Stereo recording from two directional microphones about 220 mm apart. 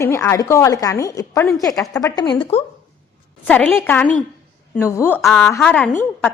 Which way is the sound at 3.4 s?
5° left (ahead or behind).